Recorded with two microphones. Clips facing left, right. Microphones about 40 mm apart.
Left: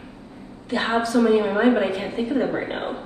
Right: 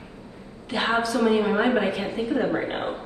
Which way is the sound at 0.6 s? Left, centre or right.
Right.